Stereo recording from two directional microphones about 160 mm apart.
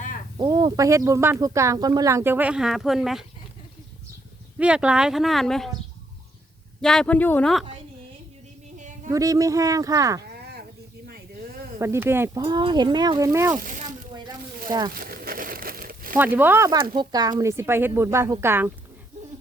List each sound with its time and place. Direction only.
0.3 s speech: 25° right (ahead or behind); by 3.2 s centre (ahead or behind)
4.5 s speech: 5° right (ahead or behind)
6.8 s speech: 5° left (ahead or behind)
8.8 s a sound: 50° right (ahead or behind)
9.0 s speech: 20° right (ahead or behind)
11.0 s a sound: 70° right (ahead or behind)
11.8 s speech: 15° right (ahead or behind)
13.6 s speech: 55° right (ahead or behind)
14.7 s speech: 25° right (ahead or behind)
14.9 s crumpling: 70° right (ahead or behind)
16.1 s speech: 10° right (ahead or behind)
16.7 s speech: 30° right (ahead or behind); by 18.7 s 15° right (ahead or behind)